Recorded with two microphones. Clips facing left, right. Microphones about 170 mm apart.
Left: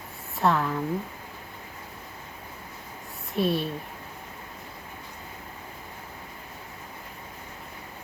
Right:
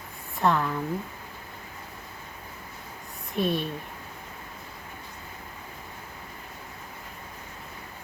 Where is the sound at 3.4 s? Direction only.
35° left (ahead or behind).